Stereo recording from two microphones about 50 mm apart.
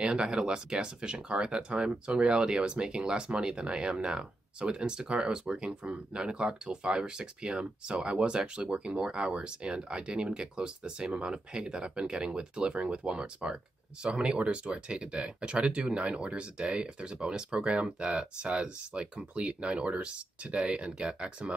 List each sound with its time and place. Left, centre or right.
0.0 s speech: centre